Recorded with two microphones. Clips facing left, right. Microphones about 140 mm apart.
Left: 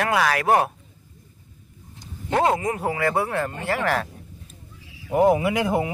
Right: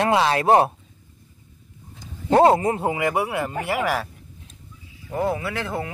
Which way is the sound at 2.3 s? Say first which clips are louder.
Right 5 dB; 35° right (ahead or behind).